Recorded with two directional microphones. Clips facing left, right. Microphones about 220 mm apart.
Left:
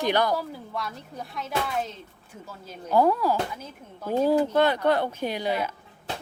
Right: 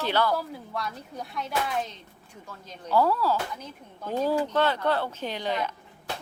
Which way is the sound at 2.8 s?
15° left (ahead or behind).